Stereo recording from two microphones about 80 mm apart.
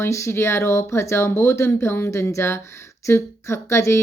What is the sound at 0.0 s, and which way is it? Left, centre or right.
Speech, left.